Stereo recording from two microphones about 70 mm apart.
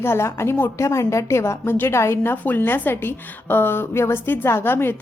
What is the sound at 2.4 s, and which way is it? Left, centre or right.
A woman's voice, left.